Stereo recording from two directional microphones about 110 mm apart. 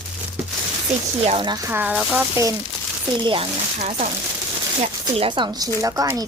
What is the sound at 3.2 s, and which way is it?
Speech, 50° right (ahead or behind).